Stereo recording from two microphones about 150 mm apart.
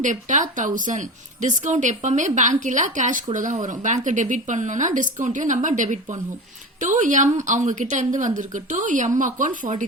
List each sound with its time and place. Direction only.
0.0 s a woman's voice: 55° right (ahead or behind)